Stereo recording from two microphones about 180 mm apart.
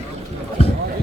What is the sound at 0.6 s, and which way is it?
Run, 30° left (ahead or behind).